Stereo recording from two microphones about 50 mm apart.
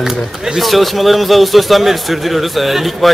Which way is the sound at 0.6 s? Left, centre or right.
Centre.